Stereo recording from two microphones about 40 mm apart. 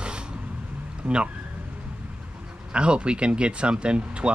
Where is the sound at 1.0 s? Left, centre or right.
Right.